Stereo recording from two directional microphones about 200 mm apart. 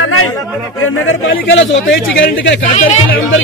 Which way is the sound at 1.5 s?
65° left (ahead or behind).